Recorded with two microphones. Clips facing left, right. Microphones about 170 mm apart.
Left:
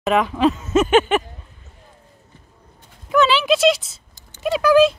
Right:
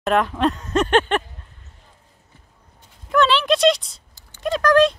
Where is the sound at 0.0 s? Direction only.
Centre (ahead or behind).